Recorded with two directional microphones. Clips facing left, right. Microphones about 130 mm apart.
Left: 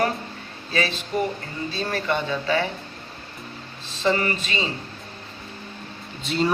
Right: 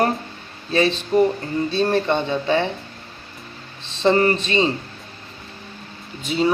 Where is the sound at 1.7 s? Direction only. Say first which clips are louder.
Right 6 dB; 25° right (ahead or behind).